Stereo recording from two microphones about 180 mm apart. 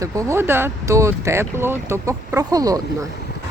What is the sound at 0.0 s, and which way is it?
Speech, 15° right (ahead or behind).